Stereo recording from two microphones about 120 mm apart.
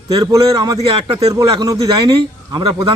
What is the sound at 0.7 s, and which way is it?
Speech, 50° right (ahead or behind).